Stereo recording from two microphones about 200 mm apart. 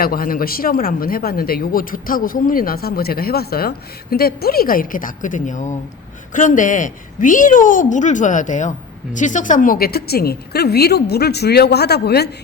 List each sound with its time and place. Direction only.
0.0 s a woman's voice: 45° left (ahead or behind)